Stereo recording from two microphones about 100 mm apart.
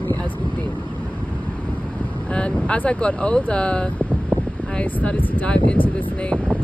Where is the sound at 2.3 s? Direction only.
10° left (ahead or behind).